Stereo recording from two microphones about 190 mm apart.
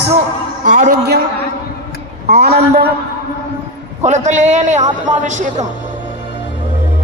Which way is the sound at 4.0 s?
40° right (ahead or behind).